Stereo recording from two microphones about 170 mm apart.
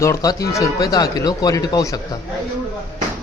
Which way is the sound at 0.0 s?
20° left (ahead or behind).